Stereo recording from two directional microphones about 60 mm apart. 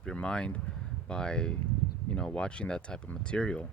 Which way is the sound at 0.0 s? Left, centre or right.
Centre.